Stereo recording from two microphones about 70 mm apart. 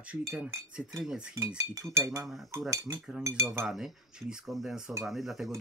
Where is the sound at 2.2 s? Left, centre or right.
Centre.